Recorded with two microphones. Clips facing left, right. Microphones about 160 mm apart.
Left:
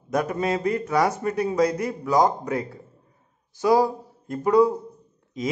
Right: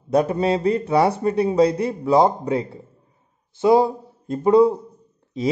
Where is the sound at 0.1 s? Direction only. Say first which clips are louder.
Right 5 dB; 30° right (ahead or behind).